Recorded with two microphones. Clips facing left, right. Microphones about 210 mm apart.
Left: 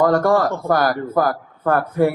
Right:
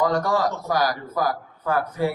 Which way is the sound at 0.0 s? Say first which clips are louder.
Left 6 dB; 55° left (ahead or behind).